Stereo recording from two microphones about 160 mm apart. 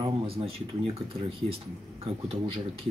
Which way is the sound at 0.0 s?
35° right (ahead or behind).